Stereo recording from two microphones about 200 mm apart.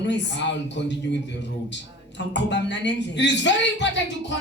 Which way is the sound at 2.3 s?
60° left (ahead or behind).